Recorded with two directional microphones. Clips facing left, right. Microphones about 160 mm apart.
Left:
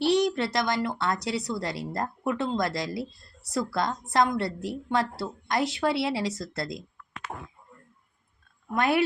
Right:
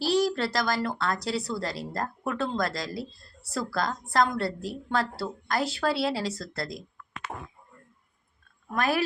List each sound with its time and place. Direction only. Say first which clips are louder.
0.0 s a sound: left 2 dB; 20° left (ahead or behind)
0.3 s a woman's voice: left 1 dB; 20° left (ahead or behind)
8.7 s a woman's voice: left 3 dB; 25° left (ahead or behind)